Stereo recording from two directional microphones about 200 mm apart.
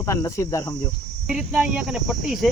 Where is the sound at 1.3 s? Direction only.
5° right (ahead or behind).